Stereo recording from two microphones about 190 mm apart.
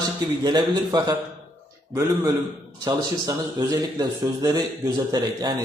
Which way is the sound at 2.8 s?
20° right (ahead or behind).